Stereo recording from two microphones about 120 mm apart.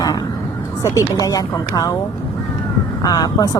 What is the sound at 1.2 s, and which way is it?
Speech, 30° left (ahead or behind).